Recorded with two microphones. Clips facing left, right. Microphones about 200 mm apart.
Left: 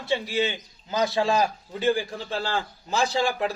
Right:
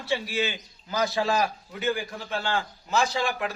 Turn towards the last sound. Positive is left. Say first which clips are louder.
# left 3 dB
turn(degrees=30)  # may be behind; listen again after turning